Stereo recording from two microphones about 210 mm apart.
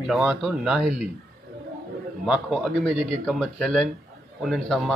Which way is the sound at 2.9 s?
25° left (ahead or behind).